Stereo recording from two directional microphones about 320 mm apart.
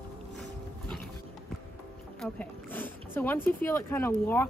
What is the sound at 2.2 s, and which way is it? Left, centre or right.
Speech, centre.